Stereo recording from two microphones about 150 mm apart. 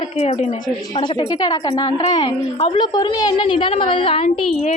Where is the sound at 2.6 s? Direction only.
35° left (ahead or behind).